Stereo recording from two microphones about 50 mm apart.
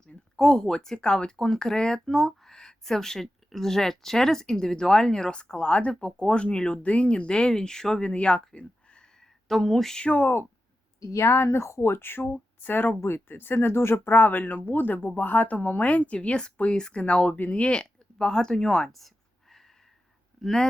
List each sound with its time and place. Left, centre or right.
0.3 s speech: centre
8.1 s a sound: left
9.5 s a sound: centre
10.0 s speech: left
11.1 s speech: left
17.3 s speech: left
17.7 s speech: centre
18.9 s a sound: centre
20.4 s speech: centre